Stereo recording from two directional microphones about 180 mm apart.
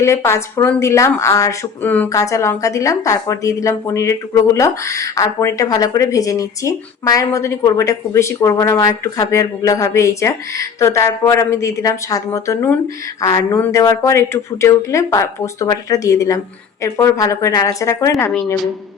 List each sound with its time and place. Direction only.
0.0 s speech: 15° left (ahead or behind)